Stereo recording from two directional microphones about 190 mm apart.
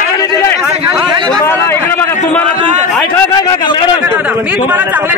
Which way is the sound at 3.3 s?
20° left (ahead or behind).